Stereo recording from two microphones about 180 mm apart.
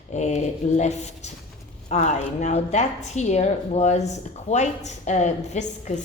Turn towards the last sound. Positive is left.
turn(degrees=40)  # may be behind; listen again after turning